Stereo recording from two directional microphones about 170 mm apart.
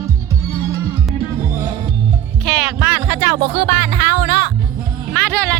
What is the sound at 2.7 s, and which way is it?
Music, 15° right (ahead or behind).